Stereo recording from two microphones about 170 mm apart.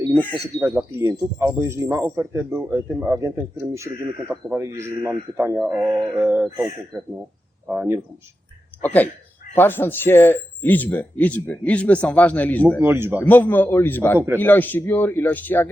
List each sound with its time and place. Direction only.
0.6 s speech: 5° right (ahead or behind)
6.9 s speech: 5° left (ahead or behind)
7.7 s speech: 10° right (ahead or behind)
8.8 s speech: 10° left (ahead or behind)
12.8 s speech: 15° right (ahead or behind)
13.2 s speech: 10° left (ahead or behind)